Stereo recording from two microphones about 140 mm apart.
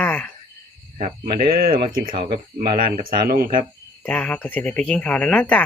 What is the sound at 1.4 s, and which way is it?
Speech, 90° right.